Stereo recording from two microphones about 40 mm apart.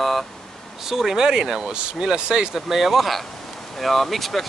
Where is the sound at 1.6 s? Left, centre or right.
Right.